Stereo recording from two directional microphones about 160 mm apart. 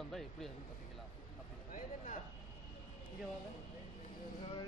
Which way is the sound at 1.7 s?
55° left (ahead or behind).